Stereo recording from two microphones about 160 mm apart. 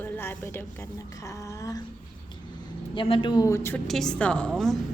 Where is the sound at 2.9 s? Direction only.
30° left (ahead or behind).